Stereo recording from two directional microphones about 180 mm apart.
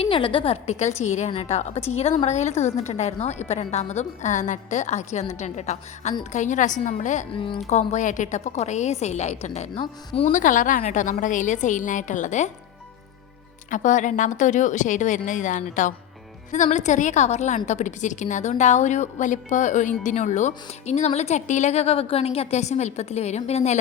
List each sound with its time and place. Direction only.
0.0 s a woman's voice: 30° left (ahead or behind)
7.3 s a woman's voice: 30° left (ahead or behind)
10.3 s speech: 45° left (ahead or behind)
13.7 s a woman's voice: 45° left (ahead or behind)